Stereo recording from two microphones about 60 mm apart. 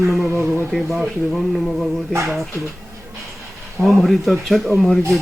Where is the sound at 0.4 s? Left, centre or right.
Right.